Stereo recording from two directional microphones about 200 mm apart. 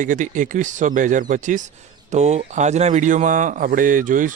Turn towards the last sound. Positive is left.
turn(degrees=-40)  # may be behind; listen again after turning